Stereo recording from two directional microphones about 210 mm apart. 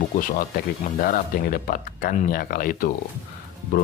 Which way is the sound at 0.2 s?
40° left (ahead or behind).